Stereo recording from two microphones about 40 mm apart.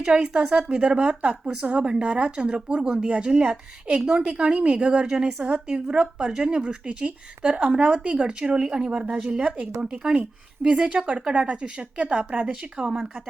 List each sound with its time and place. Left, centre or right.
0.0 s a woman's voice: right